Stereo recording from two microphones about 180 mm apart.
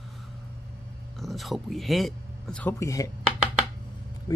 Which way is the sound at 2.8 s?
15° left (ahead or behind).